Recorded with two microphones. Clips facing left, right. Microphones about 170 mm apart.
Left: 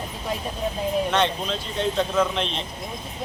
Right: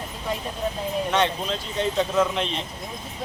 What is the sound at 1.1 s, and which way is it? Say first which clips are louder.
A man's voice: even; 5° right (ahead or behind).